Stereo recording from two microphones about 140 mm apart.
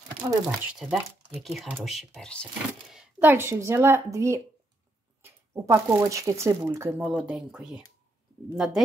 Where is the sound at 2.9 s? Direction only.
15° right (ahead or behind).